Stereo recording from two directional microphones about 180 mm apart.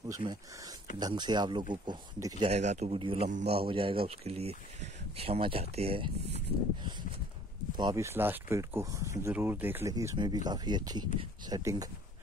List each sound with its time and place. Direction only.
0.1 s speech: 20° right (ahead or behind)
2.4 s speech: 40° right (ahead or behind)
3.3 s a man's voice: 45° right (ahead or behind)
3.5 s speech: 30° right (ahead or behind)
6.8 s a sound: 25° right (ahead or behind)
7.7 s speech: 20° right (ahead or behind)